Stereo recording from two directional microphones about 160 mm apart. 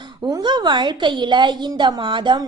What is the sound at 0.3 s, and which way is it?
A woman's voice, 25° right (ahead or behind).